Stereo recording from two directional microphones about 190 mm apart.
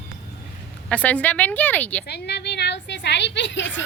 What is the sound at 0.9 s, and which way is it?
A woman's voice, 10° left (ahead or behind).